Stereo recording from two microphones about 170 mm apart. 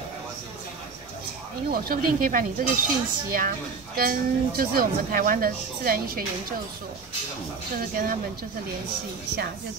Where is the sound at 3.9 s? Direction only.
60° right (ahead or behind).